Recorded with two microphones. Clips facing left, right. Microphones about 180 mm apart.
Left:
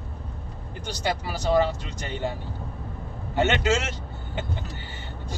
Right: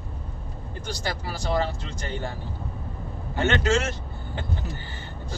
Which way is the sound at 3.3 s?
20° left (ahead or behind).